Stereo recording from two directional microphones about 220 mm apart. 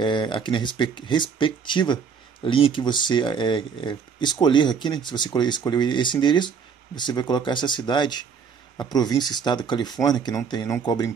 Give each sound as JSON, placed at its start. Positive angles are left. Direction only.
{"t": 0.0, "sound": "speech", "side_deg": 20}